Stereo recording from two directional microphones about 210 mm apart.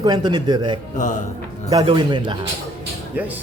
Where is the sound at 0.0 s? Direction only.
20° right (ahead or behind).